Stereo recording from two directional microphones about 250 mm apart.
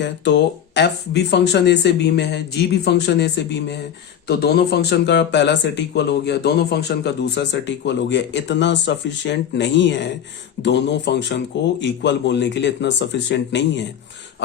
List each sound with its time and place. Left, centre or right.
0.0 s speech: left